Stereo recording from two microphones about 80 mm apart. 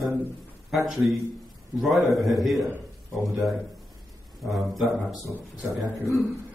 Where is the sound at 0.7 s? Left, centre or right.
Centre.